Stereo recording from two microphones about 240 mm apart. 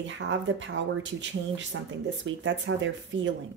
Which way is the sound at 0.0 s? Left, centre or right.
Right.